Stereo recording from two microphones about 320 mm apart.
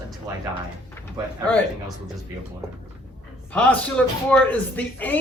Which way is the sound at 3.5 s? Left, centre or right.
Centre.